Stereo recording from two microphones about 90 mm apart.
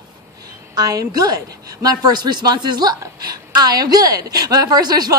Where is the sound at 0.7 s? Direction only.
40° right (ahead or behind).